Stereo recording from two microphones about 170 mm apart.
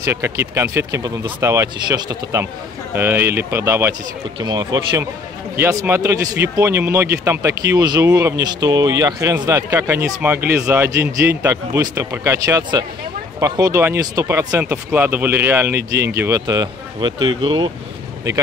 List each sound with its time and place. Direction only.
0.0 s speech: 15° right (ahead or behind)